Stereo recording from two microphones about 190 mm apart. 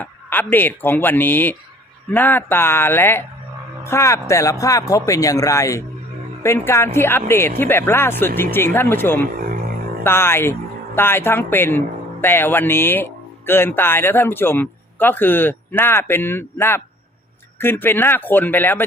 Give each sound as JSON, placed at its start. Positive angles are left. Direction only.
{"t": 0.0, "sound": "speech", "side_deg": 10}